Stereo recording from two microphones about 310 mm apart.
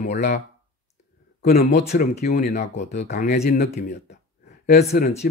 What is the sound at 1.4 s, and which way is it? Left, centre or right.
Speech, left.